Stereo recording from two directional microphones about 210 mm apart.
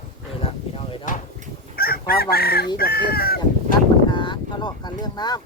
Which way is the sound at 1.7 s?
45° left (ahead or behind).